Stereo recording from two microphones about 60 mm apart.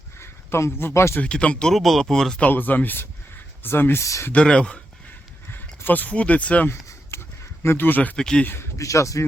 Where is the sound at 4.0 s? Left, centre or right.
Left.